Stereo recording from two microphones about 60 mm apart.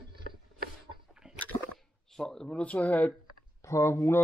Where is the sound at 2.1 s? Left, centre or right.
Centre; by 3.1 s left.